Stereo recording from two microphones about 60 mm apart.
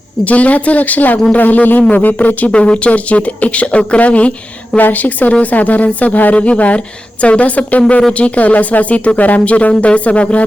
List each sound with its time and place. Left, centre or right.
0.3 s speech: left